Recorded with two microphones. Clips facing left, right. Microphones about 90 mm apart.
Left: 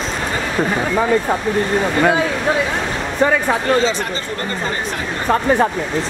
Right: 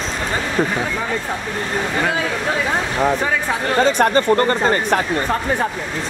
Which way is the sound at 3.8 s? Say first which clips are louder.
Right 7 dB; 55° right (ahead or behind).